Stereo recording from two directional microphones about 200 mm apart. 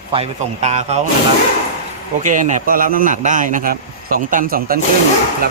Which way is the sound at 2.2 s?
40° right (ahead or behind).